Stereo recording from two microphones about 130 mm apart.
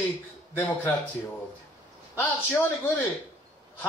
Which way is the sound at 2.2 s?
15° left (ahead or behind).